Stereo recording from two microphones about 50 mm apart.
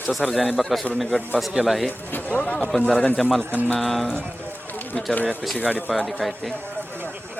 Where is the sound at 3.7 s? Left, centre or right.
Centre.